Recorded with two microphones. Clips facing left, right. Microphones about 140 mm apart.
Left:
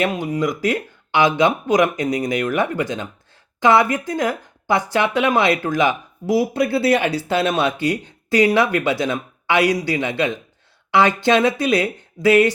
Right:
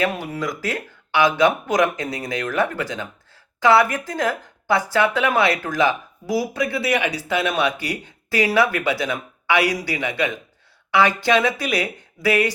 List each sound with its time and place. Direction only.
0.0 s speech: 15° left (ahead or behind)